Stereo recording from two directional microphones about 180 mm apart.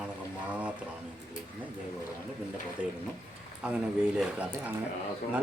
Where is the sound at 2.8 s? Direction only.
5° right (ahead or behind).